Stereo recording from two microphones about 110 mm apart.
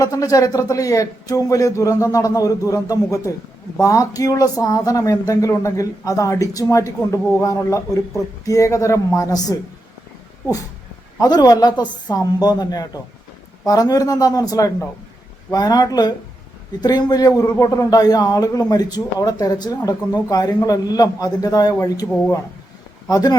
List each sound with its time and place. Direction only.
0.0 s a man's voice: 35° left (ahead or behind)
11.2 s a man's voice: 35° left (ahead or behind)
23.0 s a man's voice: 35° left (ahead or behind)